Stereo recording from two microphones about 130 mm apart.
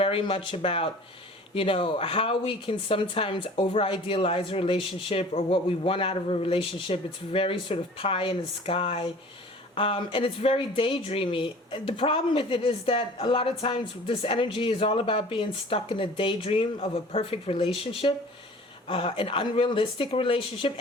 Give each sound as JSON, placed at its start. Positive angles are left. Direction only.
{"t": 0.0, "sound": "speech", "side_deg": 40}